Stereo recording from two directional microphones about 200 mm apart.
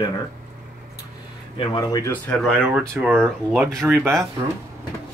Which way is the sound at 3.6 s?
10° right (ahead or behind).